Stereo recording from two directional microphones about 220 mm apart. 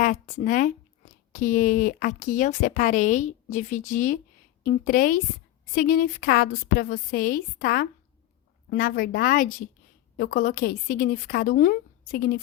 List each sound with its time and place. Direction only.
0.0 s a woman's voice: 35° left (ahead or behind)